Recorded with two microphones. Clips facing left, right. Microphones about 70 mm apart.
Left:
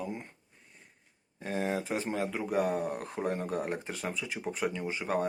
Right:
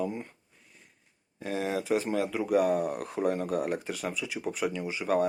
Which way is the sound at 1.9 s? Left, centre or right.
Centre.